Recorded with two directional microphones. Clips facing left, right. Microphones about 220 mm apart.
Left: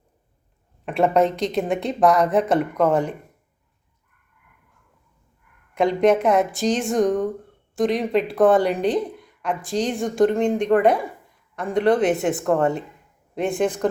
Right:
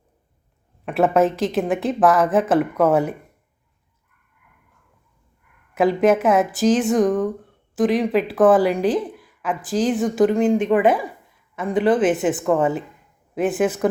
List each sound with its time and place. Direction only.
0.9 s a woman's voice: centre (ahead or behind)
5.7 s a woman's voice: 5° right (ahead or behind)